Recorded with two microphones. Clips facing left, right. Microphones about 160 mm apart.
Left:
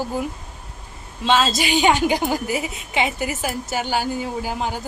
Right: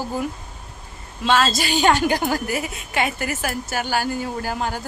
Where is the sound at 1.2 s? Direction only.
15° left (ahead or behind).